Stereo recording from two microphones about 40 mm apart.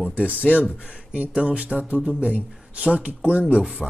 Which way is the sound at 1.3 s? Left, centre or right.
Right.